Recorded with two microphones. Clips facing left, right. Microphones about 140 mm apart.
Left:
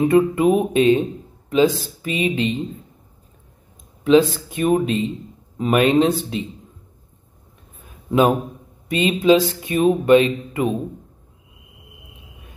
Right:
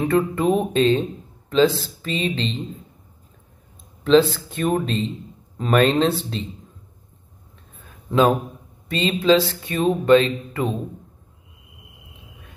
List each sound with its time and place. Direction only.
0.0 s speech: 15° left (ahead or behind)
4.0 s speech: 10° left (ahead or behind)
8.1 s a man's voice: 15° left (ahead or behind)